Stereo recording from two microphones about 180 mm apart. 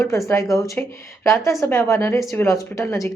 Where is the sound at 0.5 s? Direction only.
15° left (ahead or behind).